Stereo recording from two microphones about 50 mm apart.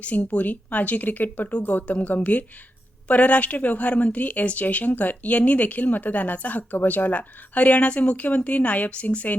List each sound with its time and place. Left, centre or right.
0.0 s a woman's voice: left